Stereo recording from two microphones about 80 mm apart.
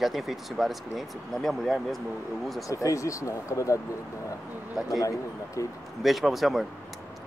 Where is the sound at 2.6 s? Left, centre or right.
Left.